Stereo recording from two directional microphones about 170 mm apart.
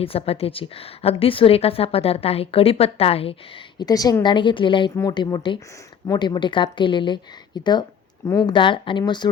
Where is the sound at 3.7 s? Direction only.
20° left (ahead or behind).